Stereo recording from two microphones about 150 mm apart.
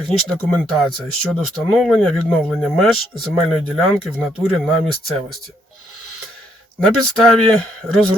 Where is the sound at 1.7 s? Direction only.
Centre (ahead or behind).